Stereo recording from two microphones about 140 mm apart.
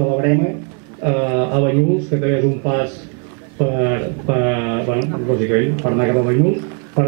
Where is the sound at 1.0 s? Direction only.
15° right (ahead or behind).